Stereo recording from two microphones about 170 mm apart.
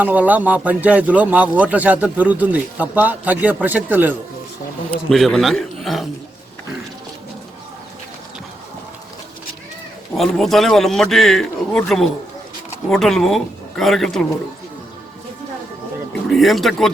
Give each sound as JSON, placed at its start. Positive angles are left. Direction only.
{"t": 0.0, "sound": "speech", "side_deg": -10}
{"t": 4.9, "sound": "a man's voice", "side_deg": 0}
{"t": 10.2, "sound": "a man's voice", "side_deg": 0}
{"t": 16.3, "sound": "a man's voice", "side_deg": 0}